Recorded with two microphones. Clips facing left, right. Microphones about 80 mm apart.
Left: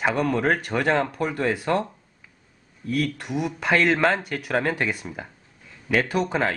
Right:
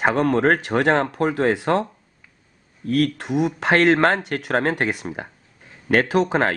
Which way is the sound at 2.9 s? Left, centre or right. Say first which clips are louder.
Right 5 dB; right.